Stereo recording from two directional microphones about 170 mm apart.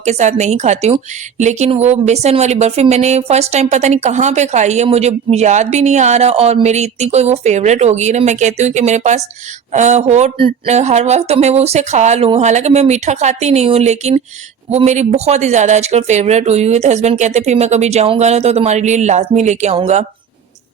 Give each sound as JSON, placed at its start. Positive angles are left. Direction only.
{"t": 0.0, "sound": "a woman's voice", "side_deg": -45}